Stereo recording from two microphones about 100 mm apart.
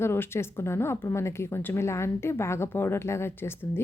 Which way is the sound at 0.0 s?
25° left (ahead or behind).